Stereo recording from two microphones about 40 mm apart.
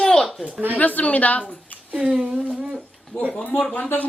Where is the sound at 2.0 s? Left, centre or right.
Right.